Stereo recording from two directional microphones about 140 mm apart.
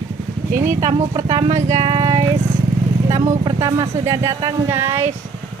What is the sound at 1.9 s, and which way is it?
Speech, 25° right (ahead or behind).